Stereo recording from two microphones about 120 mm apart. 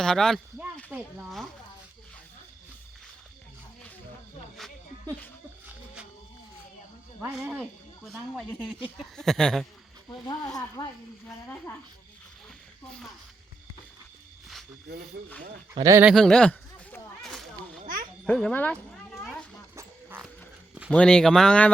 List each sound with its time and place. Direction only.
0.0 s speech: 5° left (ahead or behind)
0.9 s speech: 15° right (ahead or behind)
5.6 s music: 10° right (ahead or behind)
7.6 s speech: 5° left (ahead or behind)
10.8 s speech: 30° left (ahead or behind)
15.8 s speech: 25° right (ahead or behind)
16.0 s a sound: centre (ahead or behind)
18.3 s speech: 5° left (ahead or behind)
19.7 s music: 15° right (ahead or behind)
20.9 s speech: 10° left (ahead or behind)